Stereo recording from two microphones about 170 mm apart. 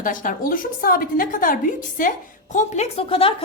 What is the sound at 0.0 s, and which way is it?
A woman's voice, 50° left (ahead or behind).